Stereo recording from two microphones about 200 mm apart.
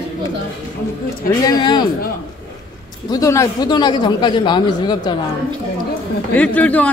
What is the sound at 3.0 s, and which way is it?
Speech, 15° left (ahead or behind).